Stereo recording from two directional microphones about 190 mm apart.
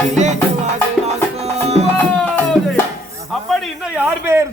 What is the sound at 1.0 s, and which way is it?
Music, 35° right (ahead or behind).